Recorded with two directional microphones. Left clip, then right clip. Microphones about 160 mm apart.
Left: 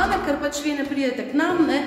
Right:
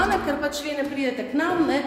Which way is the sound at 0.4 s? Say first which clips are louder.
Left 1 dB; 5° right (ahead or behind).